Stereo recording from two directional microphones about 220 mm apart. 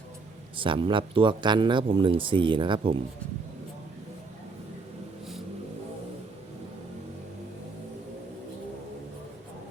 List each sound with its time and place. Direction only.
0.5 s speech: 20° right (ahead or behind)